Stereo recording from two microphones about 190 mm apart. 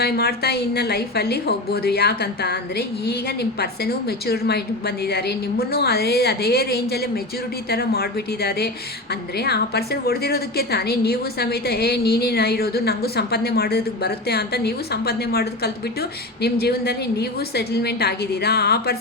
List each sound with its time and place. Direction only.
0.0 s a woman's voice: 55° left (ahead or behind)